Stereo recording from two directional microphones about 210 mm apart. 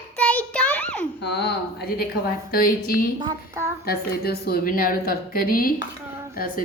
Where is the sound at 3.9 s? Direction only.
50° left (ahead or behind).